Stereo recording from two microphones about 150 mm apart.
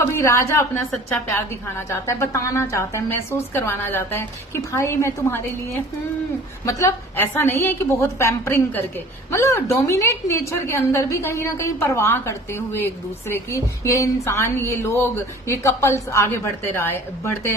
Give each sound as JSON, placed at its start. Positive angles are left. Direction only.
{"t": 0.1, "sound": "a woman's voice", "side_deg": 20}
{"t": 6.7, "sound": "a woman's voice", "side_deg": 15}